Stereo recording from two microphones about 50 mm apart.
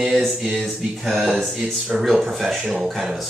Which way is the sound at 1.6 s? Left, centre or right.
Right.